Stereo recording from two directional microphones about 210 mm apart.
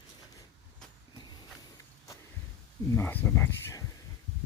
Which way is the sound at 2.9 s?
10° left (ahead or behind).